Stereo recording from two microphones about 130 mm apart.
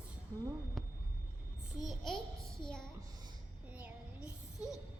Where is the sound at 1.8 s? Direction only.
Centre (ahead or behind).